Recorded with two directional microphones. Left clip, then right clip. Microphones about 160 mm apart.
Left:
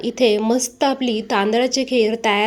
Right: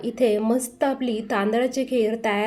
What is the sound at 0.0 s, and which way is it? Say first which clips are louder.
A woman's voice: left 4 dB; 15° left (ahead or behind).